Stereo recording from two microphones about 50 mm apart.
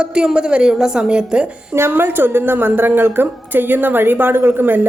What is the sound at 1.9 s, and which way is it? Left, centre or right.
A woman's voice, right.